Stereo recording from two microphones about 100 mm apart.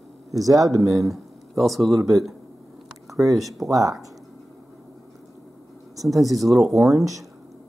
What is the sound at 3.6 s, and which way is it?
Speech, centre (ahead or behind).